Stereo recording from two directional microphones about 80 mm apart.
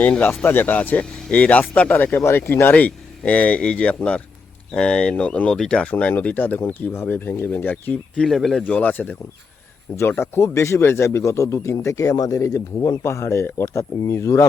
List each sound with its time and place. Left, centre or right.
0.0 s speech: centre
8.2 s speech: centre
8.6 s a man's voice: centre; by 13.0 s left
13.0 s a man's voice: left